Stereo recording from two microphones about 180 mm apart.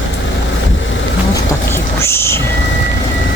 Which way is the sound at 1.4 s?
15° left (ahead or behind).